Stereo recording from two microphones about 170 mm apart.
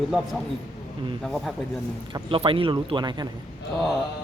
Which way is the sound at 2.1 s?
30° right (ahead or behind).